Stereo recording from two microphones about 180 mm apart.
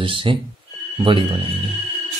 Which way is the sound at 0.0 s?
30° right (ahead or behind).